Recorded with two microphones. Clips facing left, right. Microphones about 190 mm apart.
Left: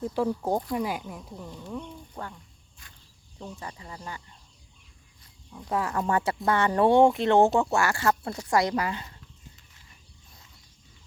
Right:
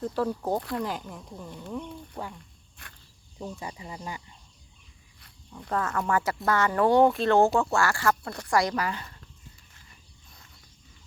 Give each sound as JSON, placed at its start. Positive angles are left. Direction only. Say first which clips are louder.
{"t": 0.0, "sound": "speech", "louder": "left 1 dB", "side_deg": 10}
{"t": 1.8, "sound": "speech", "louder": "right 2 dB", "side_deg": -10}
{"t": 2.8, "sound": "speech", "louder": "right 5 dB", "side_deg": -65}
{"t": 3.4, "sound": "speech", "louder": "right 3 dB", "side_deg": -10}
{"t": 5.5, "sound": "speech", "louder": "left 1 dB", "side_deg": 5}